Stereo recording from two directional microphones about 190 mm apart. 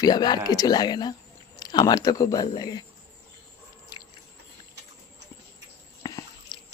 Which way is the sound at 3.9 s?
20° left (ahead or behind).